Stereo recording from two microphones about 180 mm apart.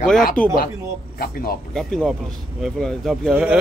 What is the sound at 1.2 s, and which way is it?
Speech, 55° left (ahead or behind).